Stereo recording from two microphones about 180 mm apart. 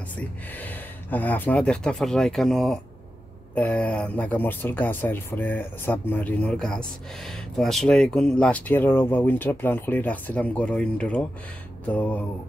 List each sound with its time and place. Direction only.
0.6 s speech: 10° left (ahead or behind)